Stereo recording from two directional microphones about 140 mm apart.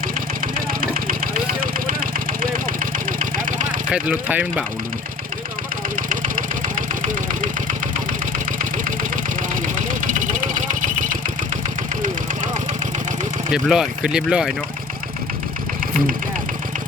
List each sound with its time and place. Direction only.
0.4 s vehicle: 80° right
3.1 s engine: 70° right (ahead or behind)
3.9 s speech: 10° right (ahead or behind)
6.0 s engine: 70° right (ahead or behind)
10.1 s vehicle: 65° right (ahead or behind)
13.5 s speech: 5° right (ahead or behind)